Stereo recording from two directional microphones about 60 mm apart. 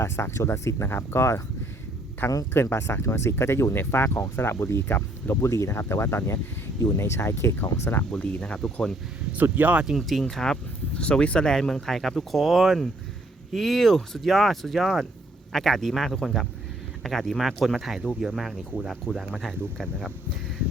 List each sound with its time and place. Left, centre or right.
0.0 s speech: left
2.5 s speech: left
8.1 s speech: centre
8.5 s speech: centre
9.3 s speech: right
9.8 s speech: centre
19.3 s speech: centre